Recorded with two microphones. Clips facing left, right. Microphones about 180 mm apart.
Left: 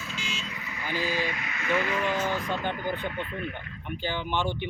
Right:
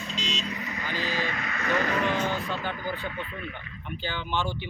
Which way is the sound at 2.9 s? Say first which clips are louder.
Left 2 dB; 55° left (ahead or behind).